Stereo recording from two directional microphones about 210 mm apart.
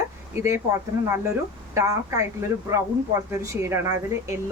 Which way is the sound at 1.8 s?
15° right (ahead or behind).